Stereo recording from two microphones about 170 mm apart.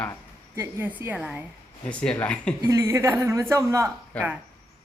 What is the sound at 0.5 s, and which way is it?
Speech, 15° right (ahead or behind).